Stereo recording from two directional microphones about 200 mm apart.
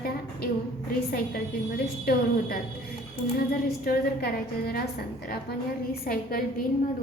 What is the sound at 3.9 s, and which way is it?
Speech, 50° left (ahead or behind).